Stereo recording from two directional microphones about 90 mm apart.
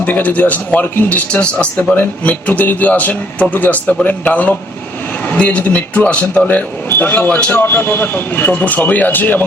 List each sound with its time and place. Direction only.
0.0 s a man's voice: 20° left (ahead or behind)